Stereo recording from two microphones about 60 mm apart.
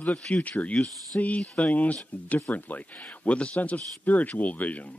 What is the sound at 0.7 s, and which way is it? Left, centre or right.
Speech, centre.